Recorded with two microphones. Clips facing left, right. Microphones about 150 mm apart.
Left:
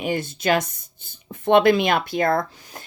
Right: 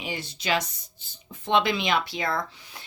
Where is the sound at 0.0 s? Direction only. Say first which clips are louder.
Left 9 dB; 50° left (ahead or behind).